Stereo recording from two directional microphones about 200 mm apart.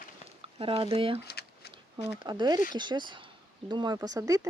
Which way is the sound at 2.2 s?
20° right (ahead or behind).